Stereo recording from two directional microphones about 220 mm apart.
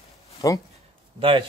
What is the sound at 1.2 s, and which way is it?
Speech, 25° right (ahead or behind).